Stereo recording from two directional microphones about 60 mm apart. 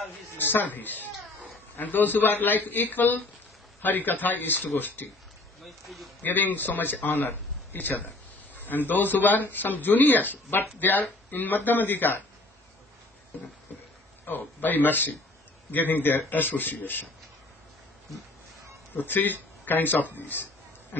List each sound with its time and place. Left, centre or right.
0.4 s speech: left
5.6 s speech: centre
6.2 s speech: left
14.2 s speech: left
18.9 s speech: left